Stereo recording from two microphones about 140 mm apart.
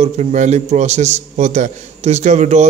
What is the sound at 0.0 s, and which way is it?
A man's voice, 55° right (ahead or behind).